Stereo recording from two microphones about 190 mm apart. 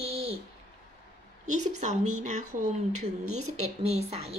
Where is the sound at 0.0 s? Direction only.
35° right (ahead or behind).